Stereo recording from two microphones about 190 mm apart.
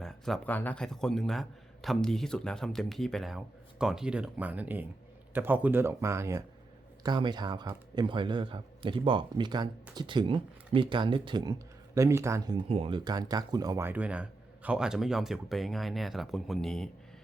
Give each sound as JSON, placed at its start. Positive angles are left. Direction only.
{"t": 0.0, "sound": "a man's voice", "side_deg": 0}